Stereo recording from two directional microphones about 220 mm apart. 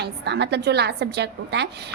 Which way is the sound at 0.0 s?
50° right (ahead or behind).